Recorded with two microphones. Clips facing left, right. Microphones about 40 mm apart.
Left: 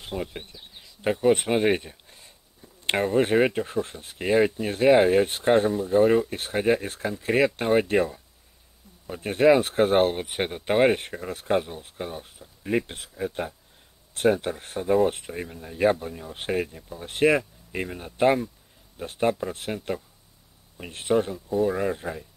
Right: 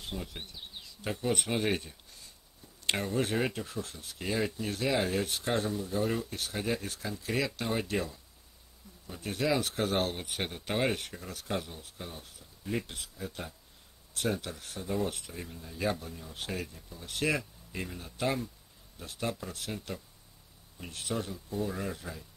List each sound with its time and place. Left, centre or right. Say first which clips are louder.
0.0 s speech: left 8 dB; left